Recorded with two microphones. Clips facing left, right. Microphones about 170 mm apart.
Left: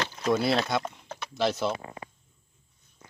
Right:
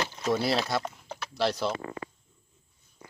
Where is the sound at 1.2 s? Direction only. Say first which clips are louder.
Left 1 dB; centre (ahead or behind).